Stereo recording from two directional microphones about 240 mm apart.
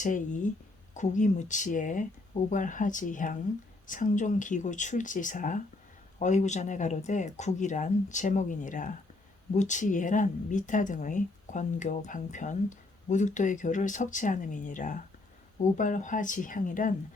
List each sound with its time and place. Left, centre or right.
0.0 s speech: left